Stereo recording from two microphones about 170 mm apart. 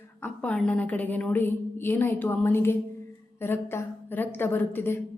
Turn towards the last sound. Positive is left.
turn(degrees=10)  # may be behind; listen again after turning